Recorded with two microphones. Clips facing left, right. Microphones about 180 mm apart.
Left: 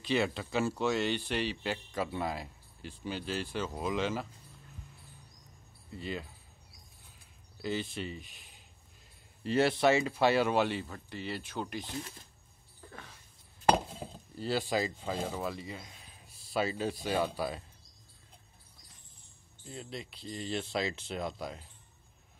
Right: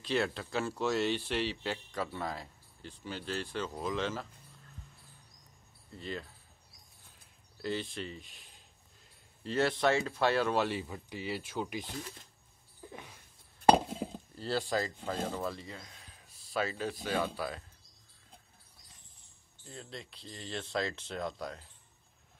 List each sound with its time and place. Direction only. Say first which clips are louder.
0.0 s speech: left 2 dB; centre (ahead or behind)
5.9 s speech: left 2 dB; 10° left (ahead or behind)
7.6 s speech: left 1 dB; 5° left (ahead or behind)
9.4 s speech: left 3 dB; 10° left (ahead or behind); by 11.8 s 10° right (ahead or behind)
12.8 s a sound: right 2 dB; 10° right (ahead or behind)
14.4 s speech: left 1 dB; 10° left (ahead or behind)
19.7 s speech: left 4 dB; 5° left (ahead or behind)